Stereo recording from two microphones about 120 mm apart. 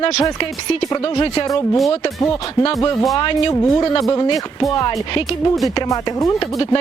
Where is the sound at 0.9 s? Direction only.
30° left (ahead or behind).